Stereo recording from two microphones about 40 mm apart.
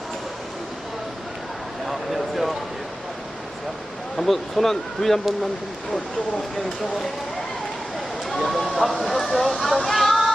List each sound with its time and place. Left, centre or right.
1.9 s a sound: centre
4.2 s speech: centre
8.3 s speech: centre